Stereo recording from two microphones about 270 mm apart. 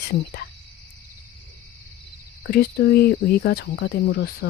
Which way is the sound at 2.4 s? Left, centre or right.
Left.